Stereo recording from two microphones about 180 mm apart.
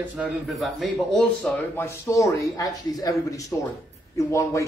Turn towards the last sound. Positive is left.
turn(degrees=15)  # may be behind; listen again after turning